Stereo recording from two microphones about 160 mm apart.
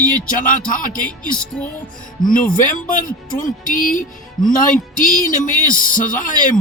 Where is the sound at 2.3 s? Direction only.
60° left (ahead or behind).